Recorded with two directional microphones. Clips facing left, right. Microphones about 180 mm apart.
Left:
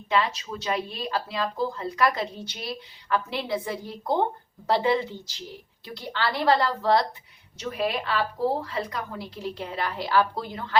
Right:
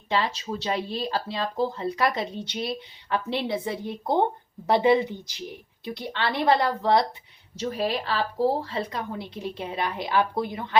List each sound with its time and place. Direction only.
0.1 s speech: 30° right (ahead or behind)
7.6 s a woman's voice: 35° right (ahead or behind); by 10.8 s 20° right (ahead or behind)